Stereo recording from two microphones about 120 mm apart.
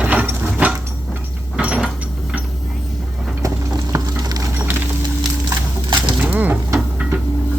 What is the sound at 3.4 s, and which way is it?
Patter, 30° right (ahead or behind).